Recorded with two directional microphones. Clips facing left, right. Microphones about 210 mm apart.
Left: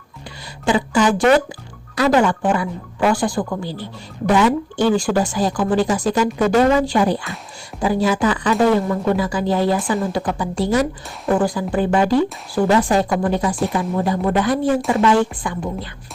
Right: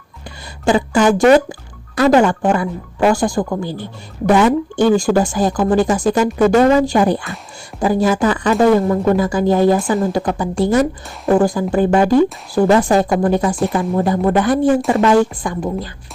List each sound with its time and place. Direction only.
0.6 s speech: 45° right (ahead or behind)